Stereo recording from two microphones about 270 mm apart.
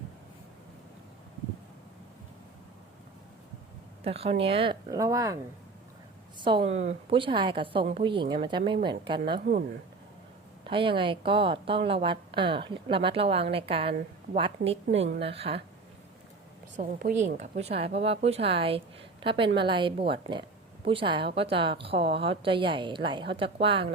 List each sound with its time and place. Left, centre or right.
4.0 s a woman's voice: right
6.4 s a woman's voice: centre
10.6 s a woman's voice: centre
16.7 s a woman's voice: right